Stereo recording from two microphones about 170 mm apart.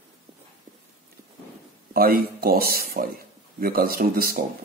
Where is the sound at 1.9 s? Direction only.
60° right (ahead or behind).